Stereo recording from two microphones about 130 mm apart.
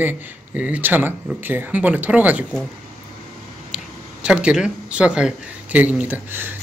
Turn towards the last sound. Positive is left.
turn(degrees=-15)  # may be behind; listen again after turning